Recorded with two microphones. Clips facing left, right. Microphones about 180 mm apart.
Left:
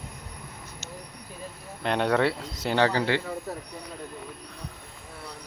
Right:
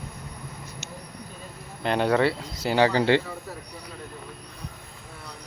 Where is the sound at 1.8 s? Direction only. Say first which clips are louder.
Right 2 dB; centre (ahead or behind).